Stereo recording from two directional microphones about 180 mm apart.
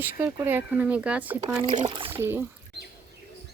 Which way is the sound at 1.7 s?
30° right (ahead or behind).